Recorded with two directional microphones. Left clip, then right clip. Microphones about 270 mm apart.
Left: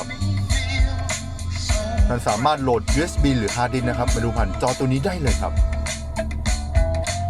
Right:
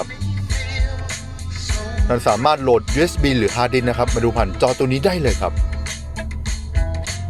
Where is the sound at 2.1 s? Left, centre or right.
Right.